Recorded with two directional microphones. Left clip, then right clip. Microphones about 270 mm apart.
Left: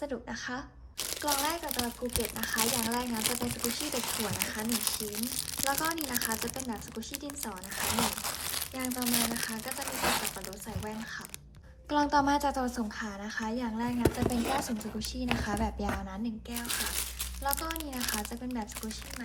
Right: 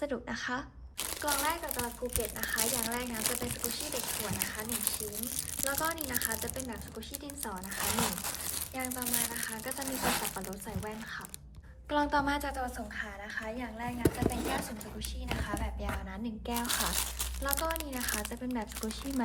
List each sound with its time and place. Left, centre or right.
0.0 s a woman's voice: centre
11.9 s a woman's voice: centre
14.0 s speech: centre
14.5 s a woman's voice: centre
16.5 s speech: centre